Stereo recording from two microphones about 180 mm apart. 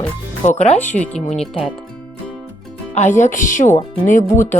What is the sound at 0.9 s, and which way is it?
Speech, 5° left (ahead or behind).